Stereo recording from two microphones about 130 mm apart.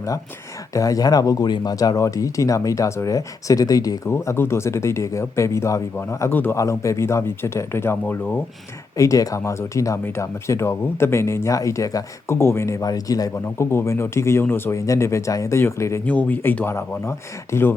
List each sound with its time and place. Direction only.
0.7 s speech: 25° left (ahead or behind)
9.0 s speech: 25° left (ahead or behind)